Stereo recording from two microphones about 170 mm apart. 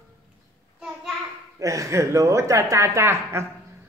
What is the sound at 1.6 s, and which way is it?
A woman's voice, 20° right (ahead or behind).